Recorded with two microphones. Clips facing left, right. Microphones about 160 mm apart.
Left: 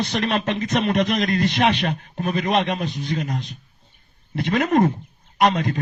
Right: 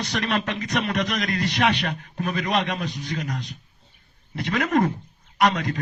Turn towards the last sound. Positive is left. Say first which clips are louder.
# left 2 dB
turn(degrees=25)  # may be behind; listen again after turning